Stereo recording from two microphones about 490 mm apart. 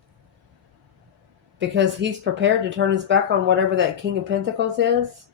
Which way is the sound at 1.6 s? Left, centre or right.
Right.